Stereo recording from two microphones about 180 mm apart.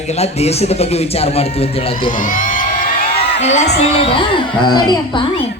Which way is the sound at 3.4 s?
40° left (ahead or behind).